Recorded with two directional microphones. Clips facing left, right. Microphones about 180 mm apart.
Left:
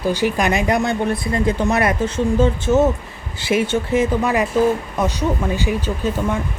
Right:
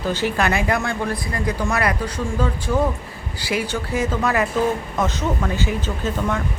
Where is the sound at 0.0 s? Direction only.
15° left (ahead or behind).